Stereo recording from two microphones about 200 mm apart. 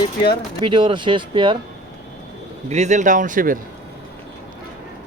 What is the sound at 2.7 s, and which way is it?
Speech, 35° right (ahead or behind).